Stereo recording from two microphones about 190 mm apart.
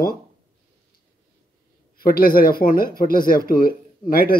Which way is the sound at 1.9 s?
50° left (ahead or behind).